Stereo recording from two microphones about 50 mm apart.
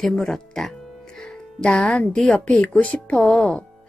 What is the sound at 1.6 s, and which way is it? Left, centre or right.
Speech, centre.